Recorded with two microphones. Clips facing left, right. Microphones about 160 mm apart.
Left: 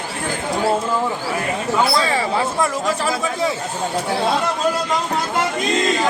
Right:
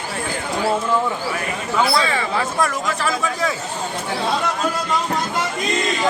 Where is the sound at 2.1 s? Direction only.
35° left (ahead or behind).